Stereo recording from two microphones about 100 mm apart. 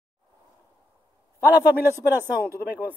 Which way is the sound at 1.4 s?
20° right (ahead or behind).